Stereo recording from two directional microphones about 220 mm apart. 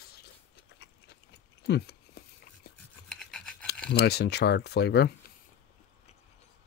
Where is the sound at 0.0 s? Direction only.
45° left (ahead or behind).